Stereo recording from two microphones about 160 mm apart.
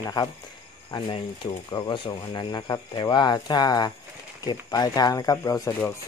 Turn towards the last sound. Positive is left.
turn(degrees=20)  # may be behind; listen again after turning